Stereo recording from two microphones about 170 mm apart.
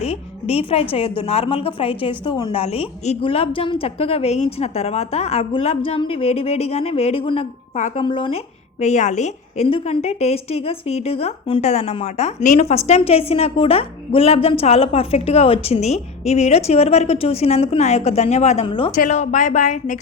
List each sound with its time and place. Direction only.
0.0 s a woman's voice: 35° left (ahead or behind)
7.8 s speech: 45° left (ahead or behind)
8.0 s speech: 30° left (ahead or behind)
8.8 s a woman's voice: 45° left (ahead or behind)
18.9 s speech: 45° left (ahead or behind)